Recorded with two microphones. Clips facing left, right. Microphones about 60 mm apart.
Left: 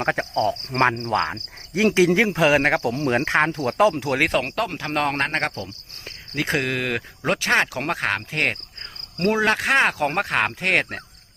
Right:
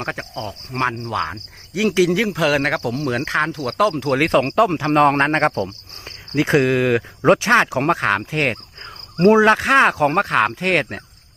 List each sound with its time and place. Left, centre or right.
0.0 s cricket: left
1.1 s speech: left
4.1 s speech: centre; by 5.5 s right
6.1 s speech: centre
9.1 s speech: right
9.6 s speech: centre